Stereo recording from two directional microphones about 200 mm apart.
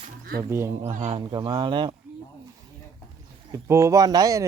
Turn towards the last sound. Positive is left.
turn(degrees=-15)  # may be behind; listen again after turning